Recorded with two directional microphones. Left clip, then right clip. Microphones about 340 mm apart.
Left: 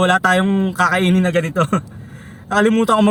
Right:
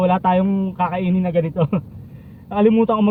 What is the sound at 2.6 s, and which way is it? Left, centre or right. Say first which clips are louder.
Speech: even; centre.